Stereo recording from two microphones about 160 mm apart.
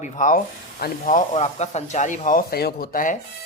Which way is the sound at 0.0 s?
55° left (ahead or behind).